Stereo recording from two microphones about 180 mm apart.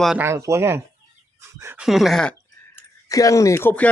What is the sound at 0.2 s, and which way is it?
Speech, 15° right (ahead or behind).